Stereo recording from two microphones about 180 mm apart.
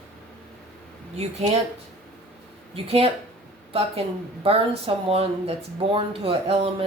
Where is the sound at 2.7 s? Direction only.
35° right (ahead or behind).